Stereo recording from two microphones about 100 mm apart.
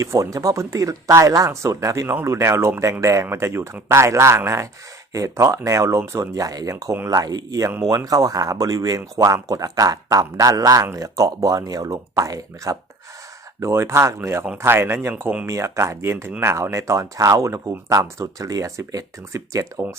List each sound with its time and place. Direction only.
0.0 s speech: 30° right (ahead or behind)
3.0 s speech: 35° right (ahead or behind)